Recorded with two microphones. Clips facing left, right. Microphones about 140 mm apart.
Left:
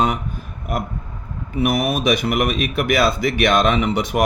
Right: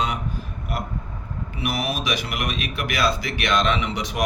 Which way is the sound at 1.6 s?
50° left (ahead or behind).